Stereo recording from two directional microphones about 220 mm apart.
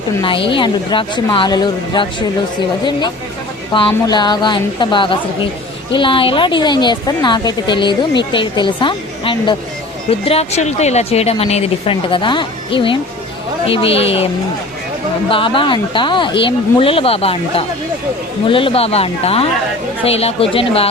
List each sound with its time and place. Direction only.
0.2 s a woman's voice: 25° left (ahead or behind)
3.7 s a woman's voice: 20° left (ahead or behind)
15.3 s a woman's voice: 25° left (ahead or behind)